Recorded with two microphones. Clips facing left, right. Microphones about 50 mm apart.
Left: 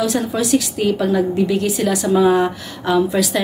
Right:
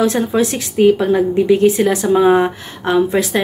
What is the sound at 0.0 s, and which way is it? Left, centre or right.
Speech, right.